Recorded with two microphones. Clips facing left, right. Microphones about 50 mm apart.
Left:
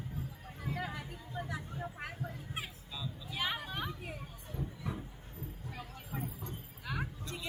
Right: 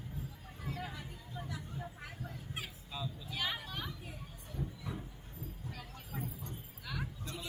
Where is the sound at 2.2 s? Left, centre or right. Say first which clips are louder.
Left 2 dB; left.